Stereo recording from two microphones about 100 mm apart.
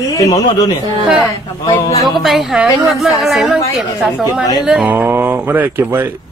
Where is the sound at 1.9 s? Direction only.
35° left (ahead or behind).